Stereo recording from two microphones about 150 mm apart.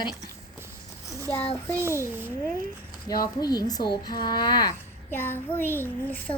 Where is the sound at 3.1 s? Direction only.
25° left (ahead or behind).